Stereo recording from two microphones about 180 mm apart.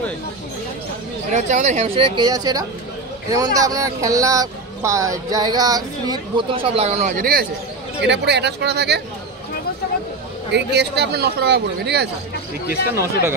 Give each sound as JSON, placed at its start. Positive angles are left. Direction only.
{"t": 1.3, "sound": "speech", "side_deg": -40}
{"t": 2.1, "sound": "speech", "side_deg": -20}
{"t": 8.0, "sound": "speech", "side_deg": -75}
{"t": 10.5, "sound": "speech", "side_deg": -70}